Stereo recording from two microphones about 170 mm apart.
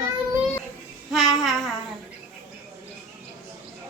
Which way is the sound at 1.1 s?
Centre (ahead or behind).